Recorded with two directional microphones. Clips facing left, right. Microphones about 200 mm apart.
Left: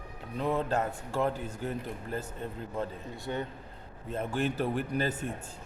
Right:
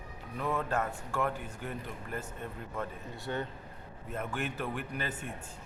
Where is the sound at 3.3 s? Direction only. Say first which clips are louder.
Left 1 dB; 15° left (ahead or behind).